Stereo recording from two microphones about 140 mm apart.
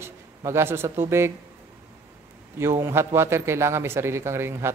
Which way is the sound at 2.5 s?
20° right (ahead or behind).